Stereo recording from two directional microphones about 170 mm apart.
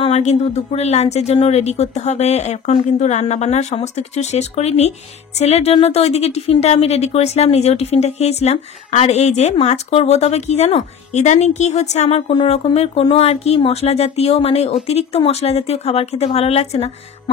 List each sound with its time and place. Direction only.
0.0 s a woman's voice: 40° left (ahead or behind)